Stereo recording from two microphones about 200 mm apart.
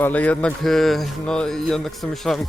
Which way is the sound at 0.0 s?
5° left (ahead or behind).